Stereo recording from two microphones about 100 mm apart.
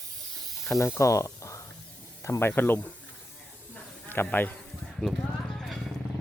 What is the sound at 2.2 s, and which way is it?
Speech, 30° left (ahead or behind).